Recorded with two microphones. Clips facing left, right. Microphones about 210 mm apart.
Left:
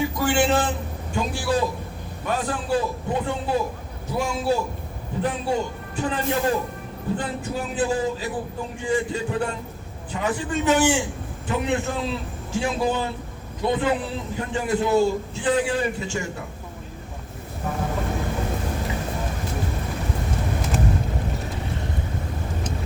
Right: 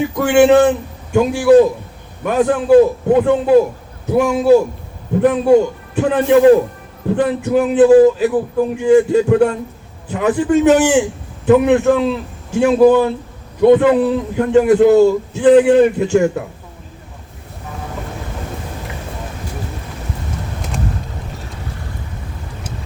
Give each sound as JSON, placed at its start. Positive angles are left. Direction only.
{"t": 0.2, "sound": "a man's voice", "side_deg": -60}
{"t": 5.2, "sound": "a man's voice", "side_deg": -65}